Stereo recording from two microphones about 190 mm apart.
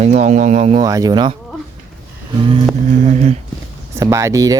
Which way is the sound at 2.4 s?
30° right (ahead or behind).